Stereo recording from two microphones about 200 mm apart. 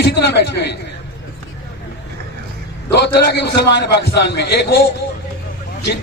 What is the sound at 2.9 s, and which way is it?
A man's voice, 55° left (ahead or behind).